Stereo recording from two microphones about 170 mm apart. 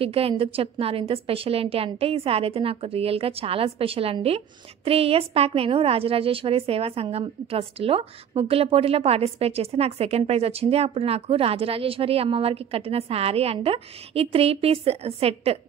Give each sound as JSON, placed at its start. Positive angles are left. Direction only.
{"t": 0.0, "sound": "a woman's voice", "side_deg": -35}